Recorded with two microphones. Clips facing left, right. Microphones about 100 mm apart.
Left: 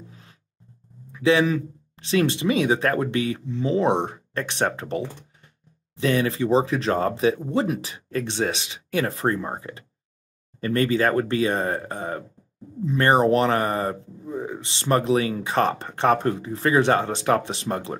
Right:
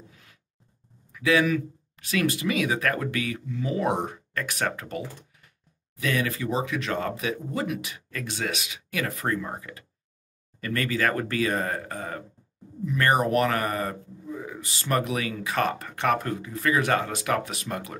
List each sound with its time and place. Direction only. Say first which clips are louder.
0.1 s music: left 6 dB; 30° left (ahead or behind)
1.1 s speech: left 3 dB; 25° left (ahead or behind)